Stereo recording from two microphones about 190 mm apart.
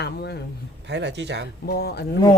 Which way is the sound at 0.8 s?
65° right (ahead or behind).